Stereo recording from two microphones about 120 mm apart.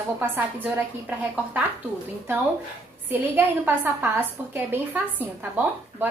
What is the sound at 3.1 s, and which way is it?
A woman's voice, 15° right (ahead or behind).